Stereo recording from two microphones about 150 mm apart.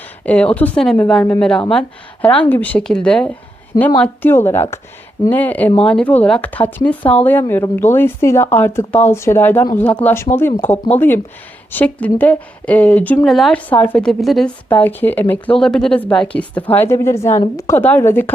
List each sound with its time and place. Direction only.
0.3 s speech: 10° left (ahead or behind)
10.7 s speech: 45° left (ahead or behind)
11.7 s a woman's voice: 10° left (ahead or behind)
14.7 s speech: 10° left (ahead or behind)